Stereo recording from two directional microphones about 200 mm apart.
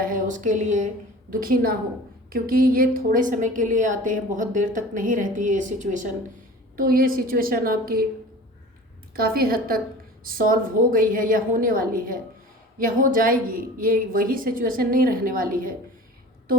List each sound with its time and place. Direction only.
0.0 s a woman's voice: 40° right (ahead or behind)
9.1 s a woman's voice: 50° right (ahead or behind)